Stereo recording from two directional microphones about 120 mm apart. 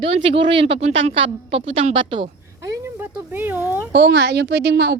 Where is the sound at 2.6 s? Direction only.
25° right (ahead or behind).